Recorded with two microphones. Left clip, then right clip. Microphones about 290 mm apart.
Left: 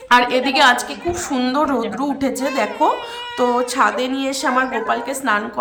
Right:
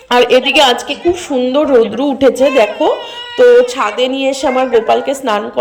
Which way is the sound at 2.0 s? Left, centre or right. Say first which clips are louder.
Right 11 dB; centre.